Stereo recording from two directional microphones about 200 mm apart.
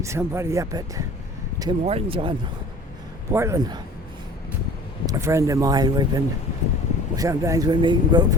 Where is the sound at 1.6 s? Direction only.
25° right (ahead or behind).